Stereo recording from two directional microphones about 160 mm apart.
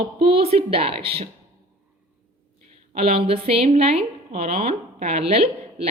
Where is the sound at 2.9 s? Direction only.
35° right (ahead or behind).